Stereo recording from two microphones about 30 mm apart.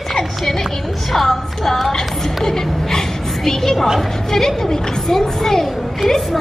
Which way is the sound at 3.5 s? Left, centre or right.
Centre.